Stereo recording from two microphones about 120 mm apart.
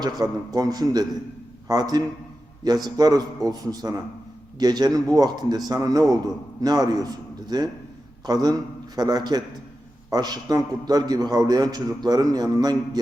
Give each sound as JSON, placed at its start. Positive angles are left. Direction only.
{"t": 0.0, "sound": "a man's voice", "side_deg": -35}